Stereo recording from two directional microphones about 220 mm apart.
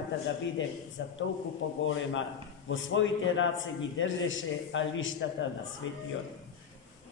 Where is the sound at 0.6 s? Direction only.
55° left (ahead or behind).